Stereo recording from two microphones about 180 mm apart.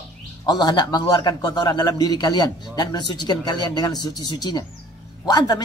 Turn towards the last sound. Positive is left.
turn(degrees=20)  # may be behind; listen again after turning